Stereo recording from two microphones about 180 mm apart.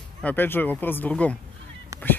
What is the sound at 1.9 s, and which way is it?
Honk, 15° right (ahead or behind).